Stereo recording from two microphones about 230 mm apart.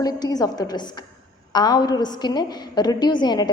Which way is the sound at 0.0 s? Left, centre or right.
Centre.